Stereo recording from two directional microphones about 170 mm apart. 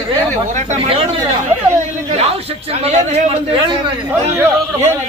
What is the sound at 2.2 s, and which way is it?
A man's voice, 35° right (ahead or behind).